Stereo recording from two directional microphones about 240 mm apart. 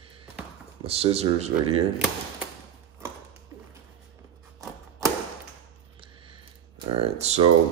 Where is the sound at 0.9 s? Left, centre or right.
Right.